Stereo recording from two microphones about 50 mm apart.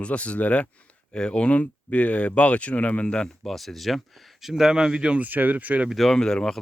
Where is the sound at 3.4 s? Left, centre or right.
Centre; by 5.2 s right.